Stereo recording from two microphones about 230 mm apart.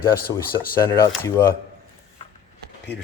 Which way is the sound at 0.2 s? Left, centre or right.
Left.